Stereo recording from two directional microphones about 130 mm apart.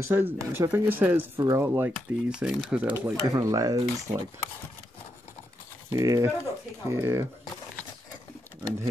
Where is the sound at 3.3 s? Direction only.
25° right (ahead or behind).